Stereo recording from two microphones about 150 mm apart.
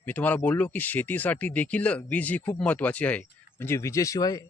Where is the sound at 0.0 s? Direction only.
10° left (ahead or behind).